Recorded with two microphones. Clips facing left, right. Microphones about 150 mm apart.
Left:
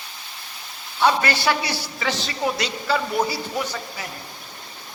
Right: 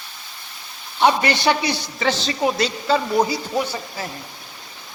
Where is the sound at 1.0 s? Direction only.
20° right (ahead or behind).